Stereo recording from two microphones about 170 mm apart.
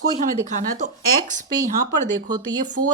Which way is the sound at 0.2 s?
45° right (ahead or behind).